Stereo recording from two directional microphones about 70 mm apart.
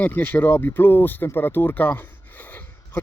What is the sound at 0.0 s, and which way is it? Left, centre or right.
Speech, left.